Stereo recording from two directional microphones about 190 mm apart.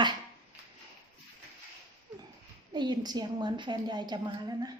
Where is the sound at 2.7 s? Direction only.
20° right (ahead or behind).